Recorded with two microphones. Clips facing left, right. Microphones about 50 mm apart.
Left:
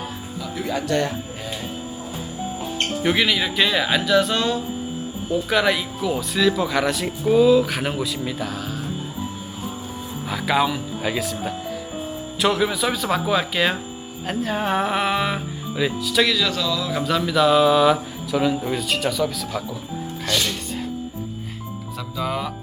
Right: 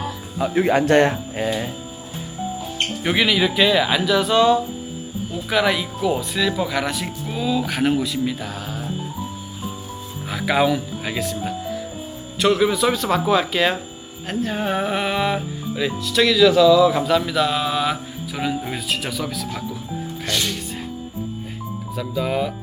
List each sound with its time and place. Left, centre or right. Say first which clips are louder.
0.3 s speech: right 9 dB; right
2.7 s speech: left 1 dB; centre
10.2 s speech: right 2 dB; centre
21.9 s speech: right 4 dB; centre